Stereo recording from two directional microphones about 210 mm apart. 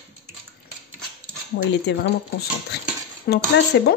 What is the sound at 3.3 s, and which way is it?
Speech, 50° left (ahead or behind).